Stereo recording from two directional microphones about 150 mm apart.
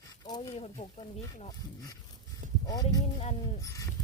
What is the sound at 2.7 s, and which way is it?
Speech, 25° left (ahead or behind).